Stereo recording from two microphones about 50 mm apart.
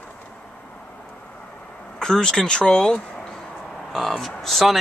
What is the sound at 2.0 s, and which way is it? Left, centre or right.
Speech, centre.